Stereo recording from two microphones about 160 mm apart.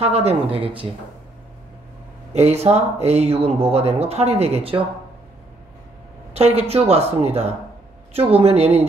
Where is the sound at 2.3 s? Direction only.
40° right (ahead or behind).